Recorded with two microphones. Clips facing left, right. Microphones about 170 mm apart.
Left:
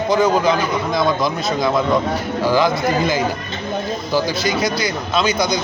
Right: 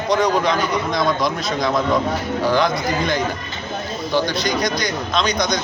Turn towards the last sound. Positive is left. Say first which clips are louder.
# left 2 dB
turn(degrees=5)  # may be behind; listen again after turning